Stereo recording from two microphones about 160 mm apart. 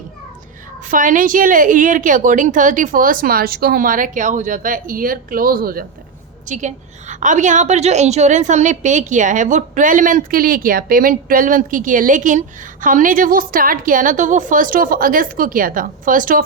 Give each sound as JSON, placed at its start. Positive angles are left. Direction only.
{"t": 0.9, "sound": "a woman's voice", "side_deg": -55}
{"t": 6.5, "sound": "a woman's voice", "side_deg": -50}